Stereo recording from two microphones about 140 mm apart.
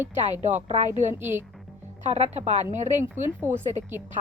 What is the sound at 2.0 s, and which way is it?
A woman's voice, 50° right (ahead or behind).